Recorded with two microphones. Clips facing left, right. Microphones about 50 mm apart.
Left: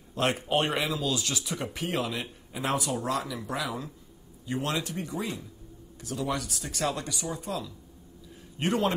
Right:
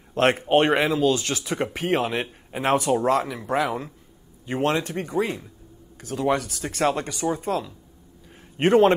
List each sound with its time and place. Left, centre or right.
0.1 s speech: right